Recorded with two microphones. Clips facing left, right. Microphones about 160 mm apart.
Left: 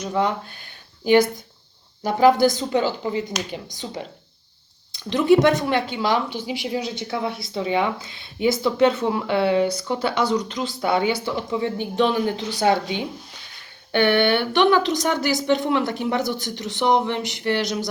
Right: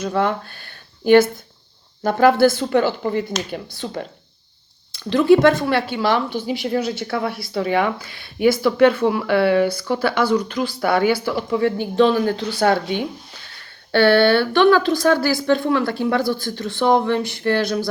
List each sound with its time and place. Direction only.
0.0 s speech: 15° left (ahead or behind)
2.8 s speech: 55° right (ahead or behind)
3.7 s a woman's voice: 15° left (ahead or behind)
6.3 s speech: 50° right (ahead or behind)
7.3 s a woman's voice: 20° left (ahead or behind)
13.9 s a woman's voice: 15° left (ahead or behind)